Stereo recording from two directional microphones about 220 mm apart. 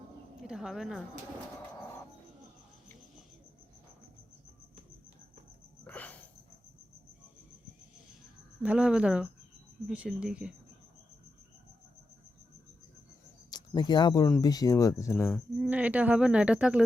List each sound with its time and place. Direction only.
0.4 s speech: centre (ahead or behind)
5.8 s a sound: 5° left (ahead or behind)
8.6 s speech: 5° right (ahead or behind)
13.5 s speech: 20° left (ahead or behind)
15.3 s speech: 5° right (ahead or behind)